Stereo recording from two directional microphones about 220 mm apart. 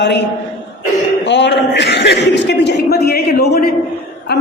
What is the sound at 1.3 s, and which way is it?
A man's voice, 50° left (ahead or behind).